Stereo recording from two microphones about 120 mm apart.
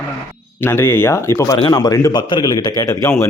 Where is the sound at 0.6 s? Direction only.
20° left (ahead or behind).